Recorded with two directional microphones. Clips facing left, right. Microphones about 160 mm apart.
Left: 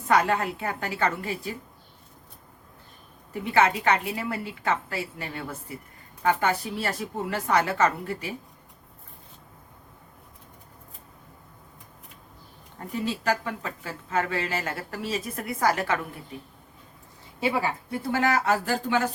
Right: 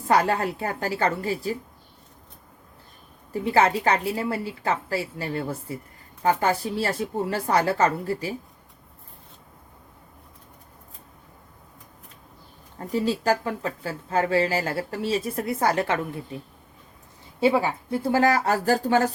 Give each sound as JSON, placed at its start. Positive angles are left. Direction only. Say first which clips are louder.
{"t": 0.1, "sound": "speech", "louder": "right 1 dB", "side_deg": -35}
{"t": 3.4, "sound": "speech", "louder": "right 2 dB", "side_deg": -35}
{"t": 12.9, "sound": "speech", "louder": "right 4 dB", "side_deg": -35}
{"t": 18.1, "sound": "speech", "louder": "right 3 dB", "side_deg": -40}